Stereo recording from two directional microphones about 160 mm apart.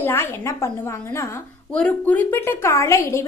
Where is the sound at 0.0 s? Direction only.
15° left (ahead or behind).